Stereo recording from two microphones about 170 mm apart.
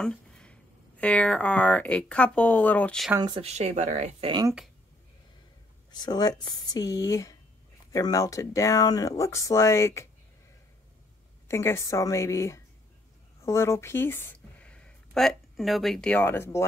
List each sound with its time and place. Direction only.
0.0 s speech: 5° left (ahead or behind)
3.2 s speech: 25° right (ahead or behind)
3.4 s speech: 40° right (ahead or behind)
4.3 s speech: 25° right (ahead or behind)
5.9 s speech: 25° left (ahead or behind)
11.4 s a woman's voice: 15° left (ahead or behind)